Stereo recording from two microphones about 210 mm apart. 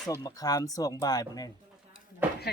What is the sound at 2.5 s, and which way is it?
Speech, 50° left (ahead or behind).